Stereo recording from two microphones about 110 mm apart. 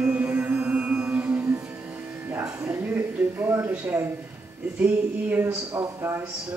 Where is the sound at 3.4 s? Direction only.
15° right (ahead or behind).